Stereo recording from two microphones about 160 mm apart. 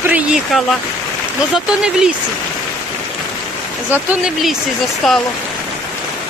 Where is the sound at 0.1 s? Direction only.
5° right (ahead or behind).